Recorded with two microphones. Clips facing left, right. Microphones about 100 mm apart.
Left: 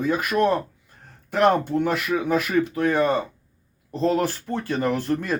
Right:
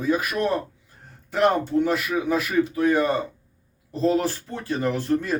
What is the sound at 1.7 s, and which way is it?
Speech, 55° left (ahead or behind).